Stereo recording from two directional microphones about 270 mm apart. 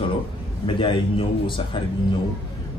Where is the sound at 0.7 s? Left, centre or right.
Centre.